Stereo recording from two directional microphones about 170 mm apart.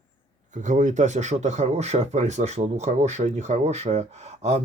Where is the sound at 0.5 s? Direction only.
45° right (ahead or behind).